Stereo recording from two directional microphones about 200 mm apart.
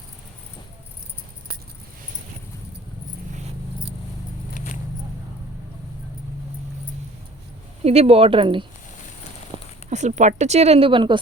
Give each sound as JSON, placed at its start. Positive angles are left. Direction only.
{"t": 4.5, "sound": "vehicle", "side_deg": 40}
{"t": 7.9, "sound": "speech", "side_deg": -30}
{"t": 9.5, "sound": "a sound", "side_deg": -25}
{"t": 9.9, "sound": "speech", "side_deg": -35}